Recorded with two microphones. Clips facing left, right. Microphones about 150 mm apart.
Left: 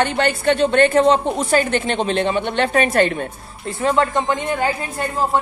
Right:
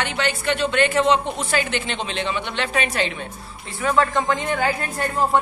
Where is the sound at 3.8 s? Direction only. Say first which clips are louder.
Left 2 dB; 25° left (ahead or behind).